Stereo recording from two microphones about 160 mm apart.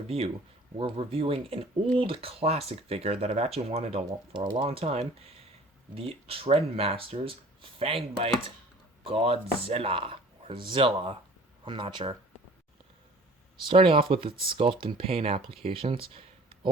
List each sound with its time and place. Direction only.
0.8 s speech: 35° right (ahead or behind)
13.6 s speech: 30° right (ahead or behind)